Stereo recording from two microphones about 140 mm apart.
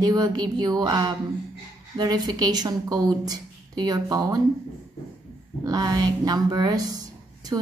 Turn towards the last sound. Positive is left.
turn(degrees=-25)  # may be behind; listen again after turning